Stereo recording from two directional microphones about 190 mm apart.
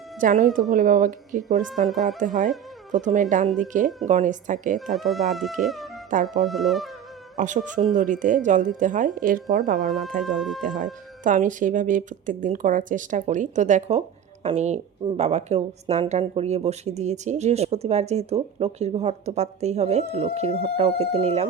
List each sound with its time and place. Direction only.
0.2 s speech: 45° right (ahead or behind)
4.9 s speech: centre (ahead or behind)
7.3 s speech: 40° right (ahead or behind)
9.7 s speech: centre (ahead or behind)
11.2 s speech: 45° right (ahead or behind)